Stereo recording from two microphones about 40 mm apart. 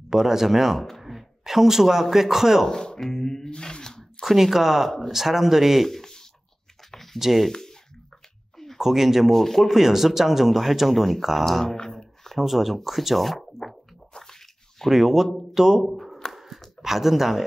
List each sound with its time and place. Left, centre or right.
0.1 s speech: centre
2.6 s speech: centre
4.2 s speech: centre
5.9 s a sound: centre
7.2 s speech: centre
8.7 s speech: centre
9.3 s speech: centre
11.6 s a sound: centre
12.3 s speech: centre
14.9 s speech: centre
15.8 s speech: centre
16.3 s a sound: centre